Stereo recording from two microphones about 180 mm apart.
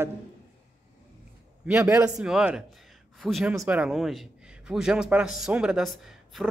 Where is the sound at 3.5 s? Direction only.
15° right (ahead or behind).